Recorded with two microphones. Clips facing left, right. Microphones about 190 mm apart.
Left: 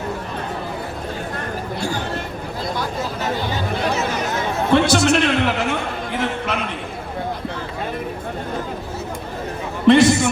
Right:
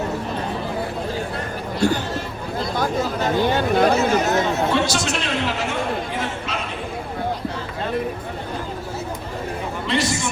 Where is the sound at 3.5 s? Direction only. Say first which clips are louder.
Right 5 dB; 55° right (ahead or behind).